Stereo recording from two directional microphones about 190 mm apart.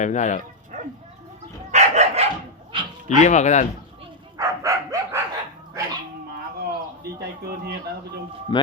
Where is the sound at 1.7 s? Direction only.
35° right (ahead or behind).